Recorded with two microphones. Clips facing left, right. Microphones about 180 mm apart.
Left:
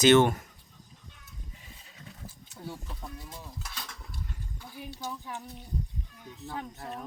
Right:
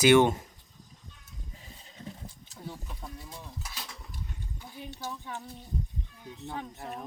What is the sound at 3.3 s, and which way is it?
Cutlery, 5° left (ahead or behind).